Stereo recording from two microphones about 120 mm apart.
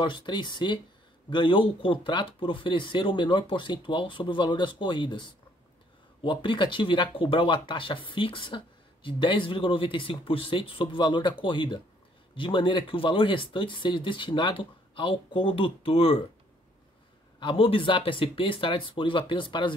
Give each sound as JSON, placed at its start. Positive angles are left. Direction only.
{"t": 0.0, "sound": "speech", "side_deg": 40}
{"t": 17.4, "sound": "speech", "side_deg": 50}